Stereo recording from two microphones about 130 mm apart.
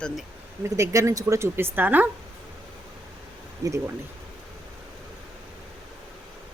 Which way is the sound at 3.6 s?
25° right (ahead or behind).